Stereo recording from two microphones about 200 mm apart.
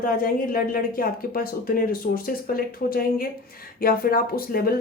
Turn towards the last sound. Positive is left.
turn(degrees=50)  # may be behind; listen again after turning